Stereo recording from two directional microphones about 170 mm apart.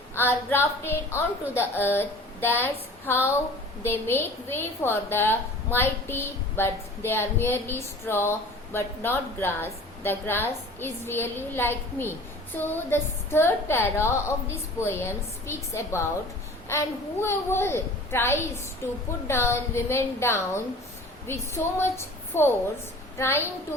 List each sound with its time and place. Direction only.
0.1 s a woman's voice: 15° left (ahead or behind)